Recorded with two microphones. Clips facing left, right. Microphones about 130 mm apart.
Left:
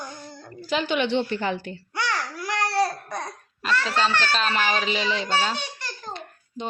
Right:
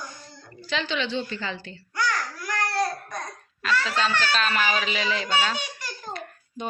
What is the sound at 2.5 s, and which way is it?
Babbling, 25° left (ahead or behind).